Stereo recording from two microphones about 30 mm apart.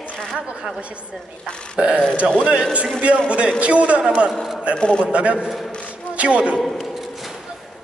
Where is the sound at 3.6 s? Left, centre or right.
Right.